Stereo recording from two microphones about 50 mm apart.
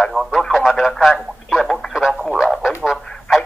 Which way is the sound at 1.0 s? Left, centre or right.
Centre.